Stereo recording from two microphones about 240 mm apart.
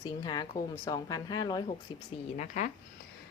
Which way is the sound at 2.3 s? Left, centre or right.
Left.